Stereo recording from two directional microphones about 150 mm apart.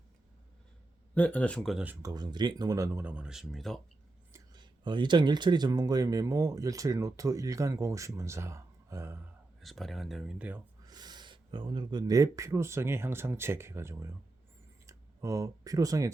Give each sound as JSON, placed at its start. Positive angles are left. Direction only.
{"t": 1.1, "sound": "speech", "side_deg": 10}
{"t": 1.8, "sound": "speech", "side_deg": -15}
{"t": 4.3, "sound": "speech", "side_deg": -25}
{"t": 9.6, "sound": "speech", "side_deg": 0}
{"t": 10.8, "sound": "speech", "side_deg": -25}